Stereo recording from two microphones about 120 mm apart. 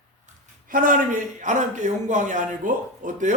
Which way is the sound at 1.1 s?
90° right.